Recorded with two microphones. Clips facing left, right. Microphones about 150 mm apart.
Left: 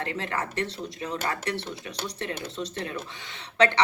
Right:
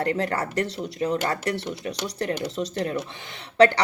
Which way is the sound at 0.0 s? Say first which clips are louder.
Right 6 dB; 40° right (ahead or behind).